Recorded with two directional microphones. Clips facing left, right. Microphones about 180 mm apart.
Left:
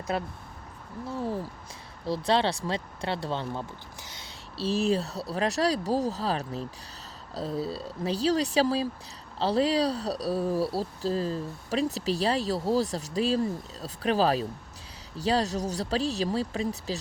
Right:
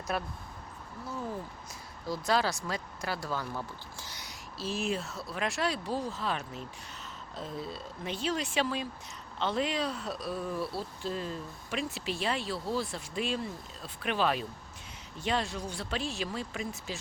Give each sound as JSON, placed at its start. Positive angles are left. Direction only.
{"t": 0.1, "sound": "speech", "side_deg": 25}